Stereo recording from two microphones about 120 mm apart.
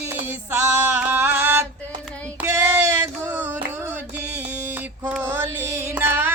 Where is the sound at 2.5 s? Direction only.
25° right (ahead or behind).